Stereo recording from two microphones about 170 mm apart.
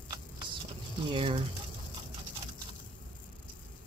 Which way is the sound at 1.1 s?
30° right (ahead or behind).